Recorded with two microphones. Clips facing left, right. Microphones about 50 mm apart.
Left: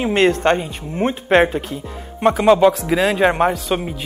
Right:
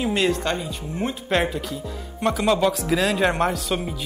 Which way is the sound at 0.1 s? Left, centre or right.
Left.